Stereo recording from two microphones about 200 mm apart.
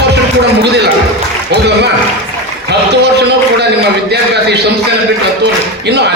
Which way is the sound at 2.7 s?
55° right (ahead or behind).